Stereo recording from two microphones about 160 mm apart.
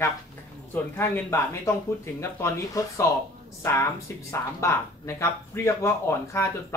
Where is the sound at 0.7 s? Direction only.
15° left (ahead or behind).